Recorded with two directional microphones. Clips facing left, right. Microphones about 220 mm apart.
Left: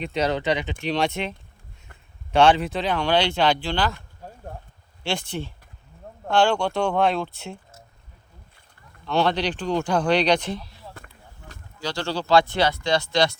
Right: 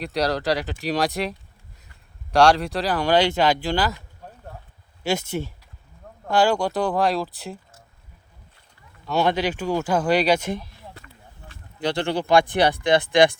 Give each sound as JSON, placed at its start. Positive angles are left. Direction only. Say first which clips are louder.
{"t": 0.0, "sound": "speech", "louder": "even", "side_deg": 0}
{"t": 2.3, "sound": "speech", "louder": "even", "side_deg": 0}
{"t": 5.0, "sound": "speech", "louder": "right 4 dB", "side_deg": -5}
{"t": 9.0, "sound": "speech", "louder": "right 1 dB", "side_deg": -5}
{"t": 10.9, "sound": "a sound", "louder": "left 1 dB", "side_deg": 45}
{"t": 11.8, "sound": "speech", "louder": "right 4 dB", "side_deg": -20}
{"t": 12.8, "sound": "speech", "louder": "right 4 dB", "side_deg": -55}
{"t": 13.1, "sound": "speech", "louder": "right 7 dB", "side_deg": -15}